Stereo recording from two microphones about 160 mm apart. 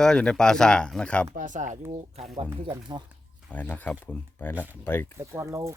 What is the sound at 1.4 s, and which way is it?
Speech, 50° right (ahead or behind).